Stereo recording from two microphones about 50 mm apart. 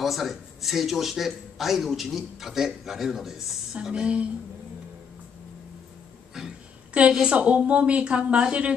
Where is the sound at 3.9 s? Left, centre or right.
Centre.